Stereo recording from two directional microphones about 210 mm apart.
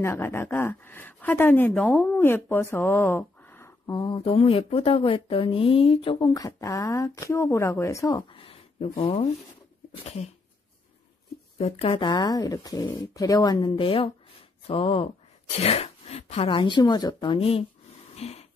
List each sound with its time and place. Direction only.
0.0 s a woman's voice: 10° left (ahead or behind); by 9.3 s 30° left (ahead or behind)
11.5 s speech: 30° left (ahead or behind)
18.1 s a sound: 30° left (ahead or behind)